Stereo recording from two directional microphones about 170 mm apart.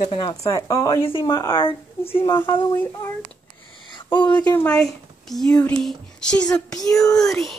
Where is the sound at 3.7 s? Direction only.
30° left (ahead or behind).